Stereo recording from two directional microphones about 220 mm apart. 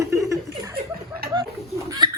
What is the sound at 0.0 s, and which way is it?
Chuckle, 15° right (ahead or behind).